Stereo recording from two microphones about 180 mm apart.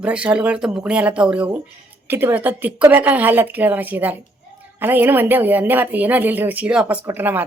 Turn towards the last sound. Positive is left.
turn(degrees=-10)  # may be behind; listen again after turning